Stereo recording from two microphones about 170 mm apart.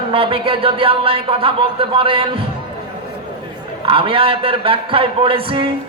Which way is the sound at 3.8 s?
30° right (ahead or behind).